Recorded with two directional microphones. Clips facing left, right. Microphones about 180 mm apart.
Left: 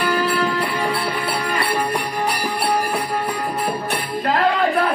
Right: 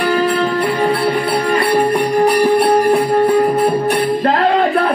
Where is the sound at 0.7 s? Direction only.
35° right (ahead or behind).